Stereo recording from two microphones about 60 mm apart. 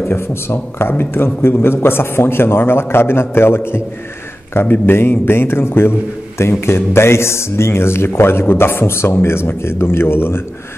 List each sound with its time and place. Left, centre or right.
0.1 s a man's voice: left